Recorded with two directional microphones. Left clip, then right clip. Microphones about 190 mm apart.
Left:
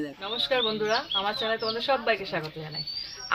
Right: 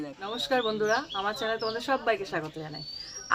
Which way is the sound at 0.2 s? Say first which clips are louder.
Left 2 dB; 30° right (ahead or behind).